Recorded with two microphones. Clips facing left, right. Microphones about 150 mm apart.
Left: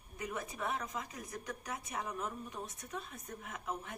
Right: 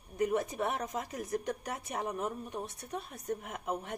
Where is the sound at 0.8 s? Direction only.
45° right (ahead or behind).